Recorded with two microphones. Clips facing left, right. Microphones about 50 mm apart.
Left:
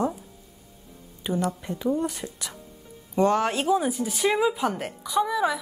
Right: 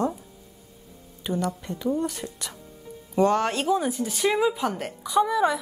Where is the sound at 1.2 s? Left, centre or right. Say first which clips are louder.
Left 1 dB; centre.